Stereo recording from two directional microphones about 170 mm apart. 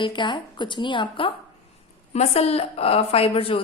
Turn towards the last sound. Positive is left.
turn(degrees=35)  # may be behind; listen again after turning